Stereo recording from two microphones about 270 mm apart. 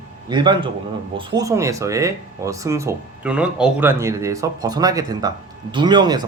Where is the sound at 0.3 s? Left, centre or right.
Centre.